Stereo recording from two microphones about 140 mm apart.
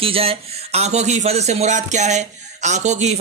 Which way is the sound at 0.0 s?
45° right (ahead or behind).